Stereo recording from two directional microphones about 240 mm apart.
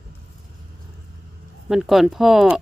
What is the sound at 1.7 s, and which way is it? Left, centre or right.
Speech, centre.